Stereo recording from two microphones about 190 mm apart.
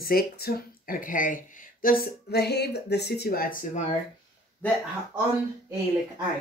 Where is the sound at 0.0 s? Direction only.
50° left (ahead or behind).